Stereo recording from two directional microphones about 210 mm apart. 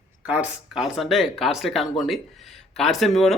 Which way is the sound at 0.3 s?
5° right (ahead or behind).